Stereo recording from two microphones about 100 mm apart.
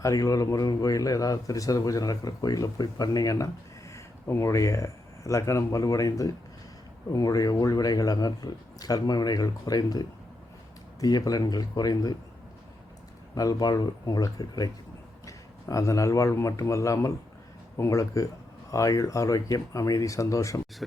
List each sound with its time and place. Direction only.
0.0 s speech: 35° left (ahead or behind)
13.3 s speech: 40° left (ahead or behind)